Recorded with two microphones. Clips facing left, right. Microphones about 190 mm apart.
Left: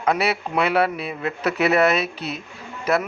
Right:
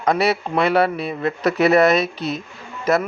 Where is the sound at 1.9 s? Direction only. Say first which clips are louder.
Right 4 dB; 35° right (ahead or behind).